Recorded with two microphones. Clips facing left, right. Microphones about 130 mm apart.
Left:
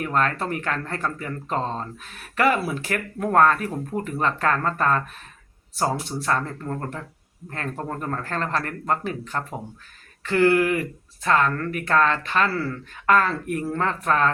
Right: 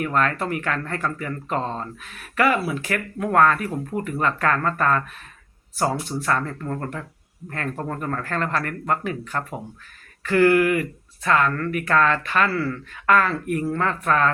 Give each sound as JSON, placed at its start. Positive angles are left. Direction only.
{"t": 0.0, "sound": "speech", "side_deg": 35}